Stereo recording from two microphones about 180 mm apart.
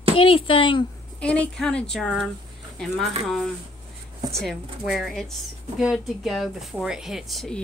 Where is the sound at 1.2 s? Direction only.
5° left (ahead or behind).